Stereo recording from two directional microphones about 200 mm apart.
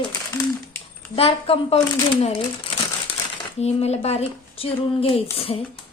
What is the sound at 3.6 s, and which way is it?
Speech, 30° left (ahead or behind).